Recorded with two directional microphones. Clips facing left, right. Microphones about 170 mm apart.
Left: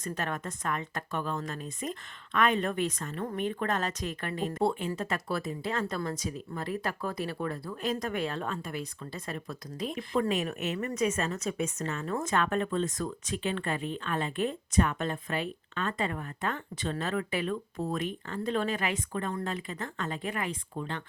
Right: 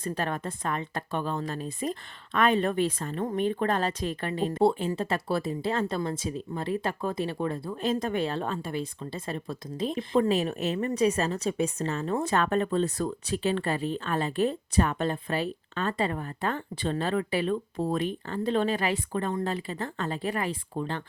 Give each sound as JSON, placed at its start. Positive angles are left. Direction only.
{"t": 0.0, "sound": "speech", "side_deg": -30}